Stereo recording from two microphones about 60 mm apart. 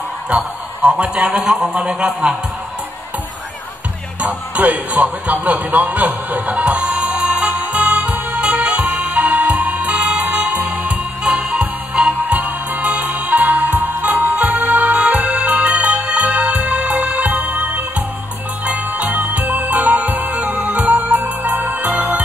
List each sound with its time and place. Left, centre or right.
0.3 s a man's voice: centre
1.5 s speech: centre
4.2 s music: right
5.2 s a man's voice: right
6.6 s music: right